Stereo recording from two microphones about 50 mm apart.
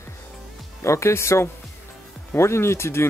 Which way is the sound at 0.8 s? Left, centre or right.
Left.